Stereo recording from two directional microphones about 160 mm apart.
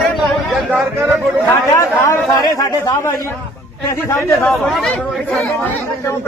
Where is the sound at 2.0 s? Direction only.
15° left (ahead or behind).